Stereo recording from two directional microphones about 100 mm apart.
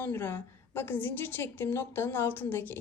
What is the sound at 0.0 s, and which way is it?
A woman's voice, 20° left (ahead or behind).